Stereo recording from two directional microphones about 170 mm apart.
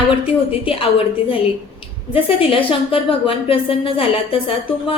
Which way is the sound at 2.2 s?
30° left (ahead or behind).